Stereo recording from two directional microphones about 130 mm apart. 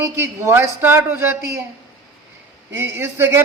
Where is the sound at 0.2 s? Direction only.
20° right (ahead or behind).